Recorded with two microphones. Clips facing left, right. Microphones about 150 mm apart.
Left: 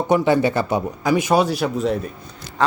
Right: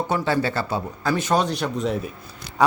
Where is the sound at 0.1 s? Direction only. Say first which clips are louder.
Left 9 dB; 15° left (ahead or behind); by 2.0 s centre (ahead or behind).